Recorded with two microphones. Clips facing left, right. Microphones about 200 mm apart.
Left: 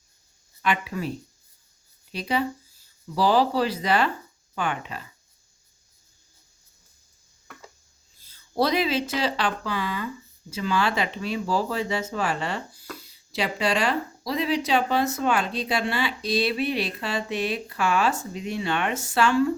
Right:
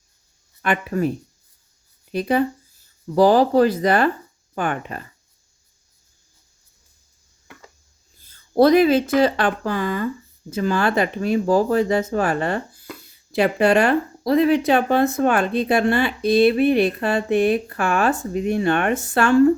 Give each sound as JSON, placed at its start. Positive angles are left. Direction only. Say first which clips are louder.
{"t": 0.6, "sound": "speech", "louder": "right 6 dB", "side_deg": -50}
{"t": 2.1, "sound": "speech", "louder": "right 7 dB", "side_deg": -50}
{"t": 8.2, "sound": "speech", "louder": "right 9 dB", "side_deg": -55}